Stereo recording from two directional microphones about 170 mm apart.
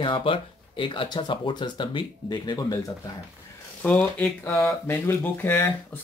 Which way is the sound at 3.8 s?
10° left (ahead or behind).